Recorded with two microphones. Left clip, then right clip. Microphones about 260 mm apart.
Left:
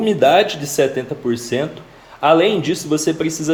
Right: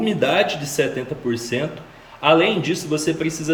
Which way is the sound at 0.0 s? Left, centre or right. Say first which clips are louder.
Left 6 dB; centre.